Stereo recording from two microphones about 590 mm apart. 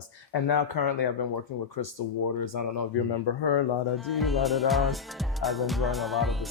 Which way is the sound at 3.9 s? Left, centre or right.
Centre.